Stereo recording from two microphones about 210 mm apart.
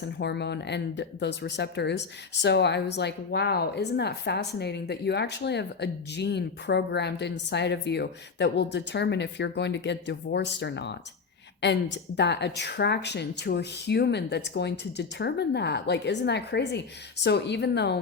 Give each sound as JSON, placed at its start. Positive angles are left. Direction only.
{"t": 0.0, "sound": "speech", "side_deg": 55}